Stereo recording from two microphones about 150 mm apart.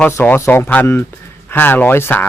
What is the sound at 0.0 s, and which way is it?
Speech, 10° left (ahead or behind).